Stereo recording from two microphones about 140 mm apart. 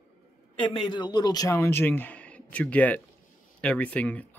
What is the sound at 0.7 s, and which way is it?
Speech, 35° left (ahead or behind).